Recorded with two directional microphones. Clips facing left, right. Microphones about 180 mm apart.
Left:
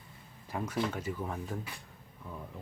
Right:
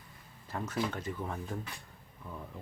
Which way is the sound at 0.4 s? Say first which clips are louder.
Left 1 dB; 10° left (ahead or behind).